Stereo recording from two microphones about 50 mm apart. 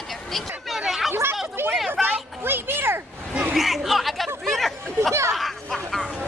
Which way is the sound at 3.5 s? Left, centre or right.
Centre.